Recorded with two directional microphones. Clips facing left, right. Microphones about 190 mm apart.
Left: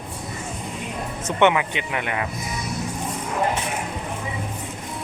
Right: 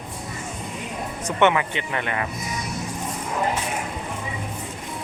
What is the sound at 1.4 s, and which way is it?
Speech, 15° left (ahead or behind).